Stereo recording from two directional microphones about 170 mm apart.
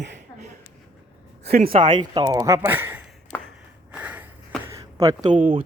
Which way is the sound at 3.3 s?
15° left (ahead or behind).